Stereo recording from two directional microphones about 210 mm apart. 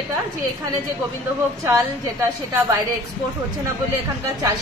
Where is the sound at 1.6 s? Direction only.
15° right (ahead or behind).